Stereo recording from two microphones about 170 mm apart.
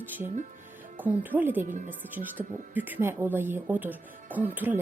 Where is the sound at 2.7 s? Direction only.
10° right (ahead or behind).